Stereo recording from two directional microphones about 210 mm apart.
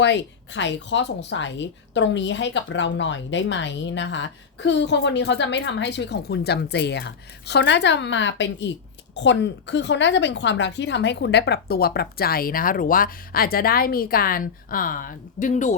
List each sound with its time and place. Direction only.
0.0 s a woman's voice: 55° left (ahead or behind); by 15.7 s 35° left (ahead or behind)